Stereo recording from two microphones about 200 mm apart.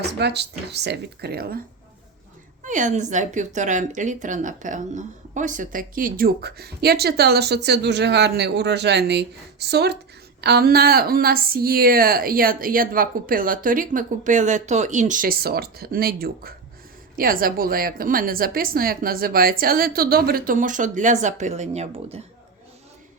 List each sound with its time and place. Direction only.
0.2 s speech: 55° right (ahead or behind)
2.6 s a woman's voice: 40° right (ahead or behind)